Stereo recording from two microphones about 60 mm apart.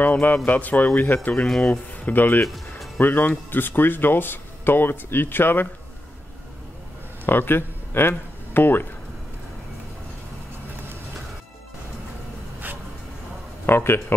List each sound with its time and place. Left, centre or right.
0.0 s speech: left
2.4 s music: centre
3.0 s speech: left
7.2 s speech: left
12.6 s a sound: right
13.7 s speech: left